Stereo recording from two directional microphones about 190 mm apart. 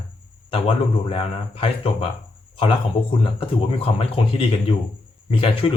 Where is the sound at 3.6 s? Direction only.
30° left (ahead or behind).